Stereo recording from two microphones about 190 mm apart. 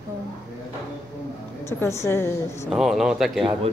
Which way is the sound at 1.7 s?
15° left (ahead or behind).